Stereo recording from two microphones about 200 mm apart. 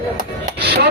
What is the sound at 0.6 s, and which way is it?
Chopping, 55° right (ahead or behind).